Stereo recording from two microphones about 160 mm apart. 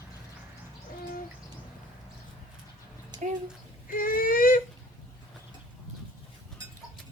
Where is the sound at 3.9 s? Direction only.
60° left (ahead or behind).